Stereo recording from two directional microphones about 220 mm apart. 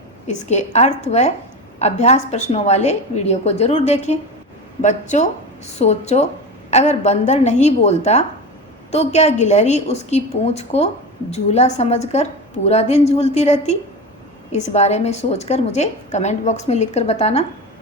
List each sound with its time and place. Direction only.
0.3 s a woman's voice: 30° left (ahead or behind)